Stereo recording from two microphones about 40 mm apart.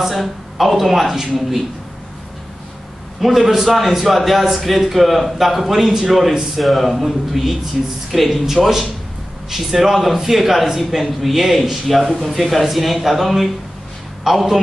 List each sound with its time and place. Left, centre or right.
0.0 s a man's voice: centre
3.2 s a man's voice: centre